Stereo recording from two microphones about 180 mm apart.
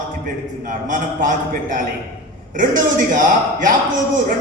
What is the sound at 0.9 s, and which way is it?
Speech, 45° right (ahead or behind).